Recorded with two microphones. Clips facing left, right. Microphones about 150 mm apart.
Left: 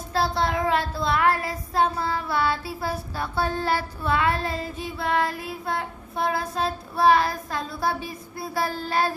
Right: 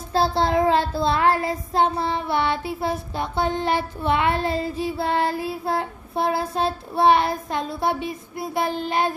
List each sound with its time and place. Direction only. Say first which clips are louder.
0.1 s child singing: right 4 dB; 30° right (ahead or behind)